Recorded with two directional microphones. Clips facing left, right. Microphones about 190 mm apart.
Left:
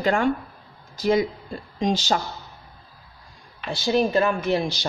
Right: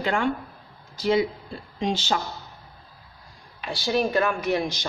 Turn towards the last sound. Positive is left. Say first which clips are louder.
# left 2 dB
turn(degrees=30)  # may be behind; listen again after turning